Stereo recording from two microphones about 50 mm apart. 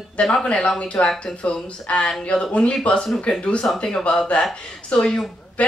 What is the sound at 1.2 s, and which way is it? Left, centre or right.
Speech, left.